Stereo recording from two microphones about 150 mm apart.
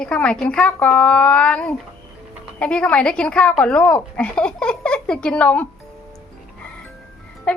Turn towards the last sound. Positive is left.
turn(degrees=10)  # may be behind; listen again after turning